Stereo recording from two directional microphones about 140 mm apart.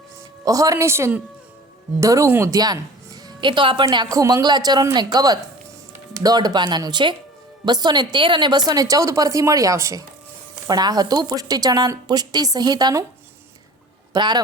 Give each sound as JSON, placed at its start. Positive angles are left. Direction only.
{"t": 0.4, "sound": "a woman's voice", "side_deg": -25}
{"t": 14.1, "sound": "speech", "side_deg": -30}